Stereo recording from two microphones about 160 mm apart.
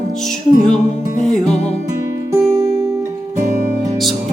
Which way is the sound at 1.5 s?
45° left (ahead or behind).